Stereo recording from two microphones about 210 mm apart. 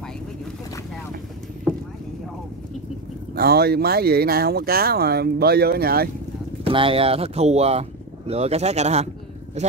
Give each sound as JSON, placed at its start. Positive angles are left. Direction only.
{"t": 3.3, "sound": "speech", "side_deg": -50}
{"t": 6.6, "sound": "speech", "side_deg": -25}